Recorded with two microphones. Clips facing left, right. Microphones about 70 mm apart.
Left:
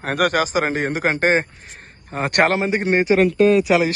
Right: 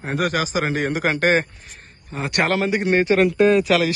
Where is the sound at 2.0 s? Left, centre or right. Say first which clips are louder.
Left 4 dB; left.